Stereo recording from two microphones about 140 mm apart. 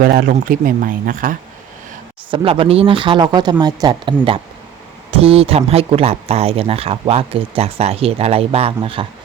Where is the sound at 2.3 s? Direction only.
40° right (ahead or behind).